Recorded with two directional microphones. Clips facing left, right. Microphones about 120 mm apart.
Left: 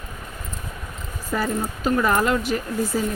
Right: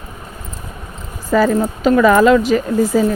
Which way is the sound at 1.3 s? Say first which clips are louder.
Right 11 dB; 90° right.